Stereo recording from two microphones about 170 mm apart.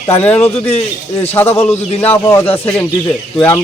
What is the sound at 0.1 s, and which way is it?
A man's voice, 10° left (ahead or behind).